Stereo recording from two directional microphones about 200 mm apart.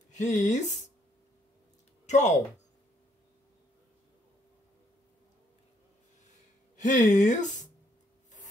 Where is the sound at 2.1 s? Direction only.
35° left (ahead or behind).